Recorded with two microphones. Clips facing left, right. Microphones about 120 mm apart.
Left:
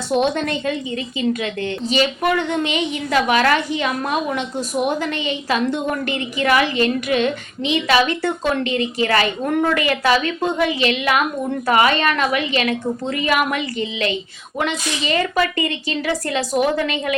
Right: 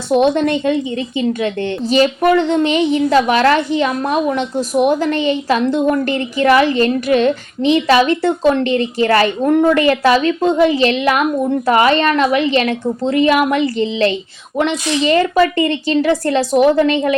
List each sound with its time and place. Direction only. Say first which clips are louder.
0.1 s a woman's voice: right 6 dB; 25° right (ahead or behind)
4.9 s a woman's voice: right 7 dB; 35° right (ahead or behind)